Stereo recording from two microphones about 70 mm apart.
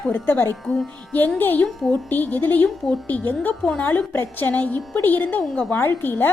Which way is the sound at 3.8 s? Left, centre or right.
Left.